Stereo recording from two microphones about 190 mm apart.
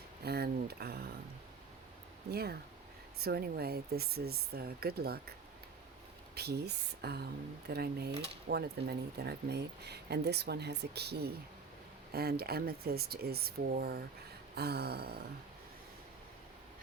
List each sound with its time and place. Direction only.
0.3 s speech: 55° right (ahead or behind)
2.3 s speech: 55° right (ahead or behind)
6.3 s speech: 55° right (ahead or behind)